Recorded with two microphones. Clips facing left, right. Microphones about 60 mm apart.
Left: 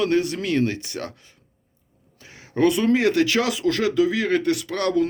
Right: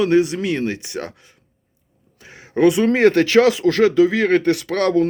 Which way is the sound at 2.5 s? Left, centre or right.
Centre.